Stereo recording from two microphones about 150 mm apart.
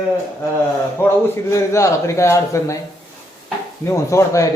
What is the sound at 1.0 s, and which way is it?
Speech, 15° left (ahead or behind).